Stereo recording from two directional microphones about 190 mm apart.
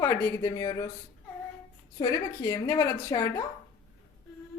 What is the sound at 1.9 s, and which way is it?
A woman's voice, 20° left (ahead or behind).